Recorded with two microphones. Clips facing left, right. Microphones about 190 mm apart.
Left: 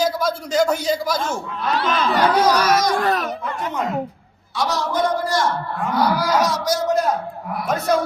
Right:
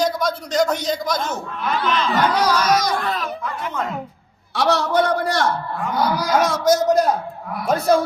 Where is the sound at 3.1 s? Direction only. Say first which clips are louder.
Left 4 dB; 75° left (ahead or behind).